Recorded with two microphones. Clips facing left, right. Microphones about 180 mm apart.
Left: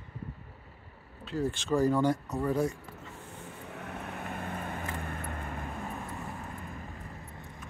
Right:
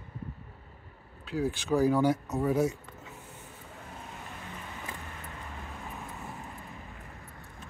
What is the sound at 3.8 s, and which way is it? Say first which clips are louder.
Vehicle: left 5 dB; 65° left (ahead or behind).